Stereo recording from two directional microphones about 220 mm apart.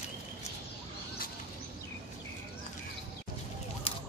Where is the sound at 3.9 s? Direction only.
25° left (ahead or behind).